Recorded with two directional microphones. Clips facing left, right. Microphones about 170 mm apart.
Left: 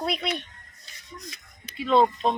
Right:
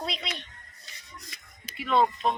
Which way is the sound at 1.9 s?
30° left (ahead or behind).